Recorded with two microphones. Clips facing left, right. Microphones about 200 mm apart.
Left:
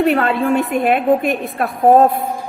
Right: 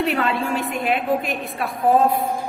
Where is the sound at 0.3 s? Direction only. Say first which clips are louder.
Left 8 dB; 55° left (ahead or behind).